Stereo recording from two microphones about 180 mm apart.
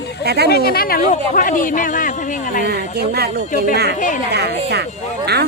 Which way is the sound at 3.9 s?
45° left (ahead or behind).